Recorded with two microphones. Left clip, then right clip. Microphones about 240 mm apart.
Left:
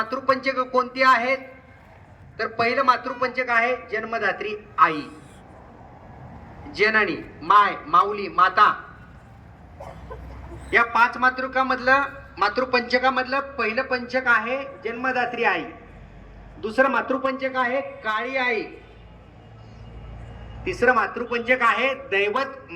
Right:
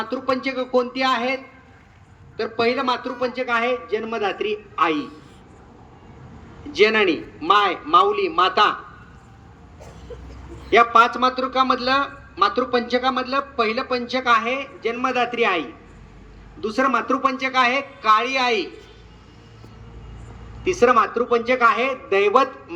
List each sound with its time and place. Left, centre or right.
0.0 s speech: centre
2.4 s speech: centre
6.7 s a man's voice: centre
10.7 s a man's voice: centre
16.6 s a man's voice: centre
18.1 s a man's voice: centre
20.7 s a man's voice: centre